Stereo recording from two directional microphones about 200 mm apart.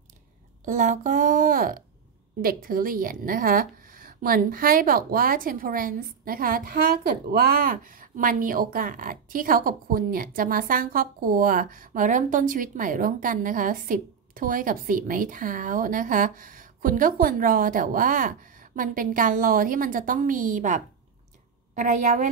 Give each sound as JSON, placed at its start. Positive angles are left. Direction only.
{"t": 0.7, "sound": "a woman's voice", "side_deg": -40}